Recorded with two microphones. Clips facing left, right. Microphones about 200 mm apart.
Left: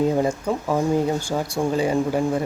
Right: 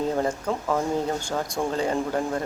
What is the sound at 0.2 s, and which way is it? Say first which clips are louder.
Speech: left 4 dB; 10° left (ahead or behind).